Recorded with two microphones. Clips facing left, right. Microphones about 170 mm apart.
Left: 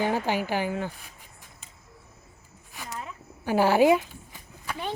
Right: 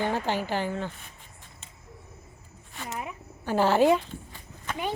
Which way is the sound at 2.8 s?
15° right (ahead or behind).